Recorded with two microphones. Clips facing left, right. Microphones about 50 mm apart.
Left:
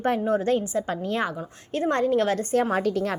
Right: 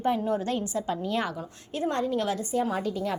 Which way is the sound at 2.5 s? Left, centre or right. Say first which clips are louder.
Left 5 dB; left.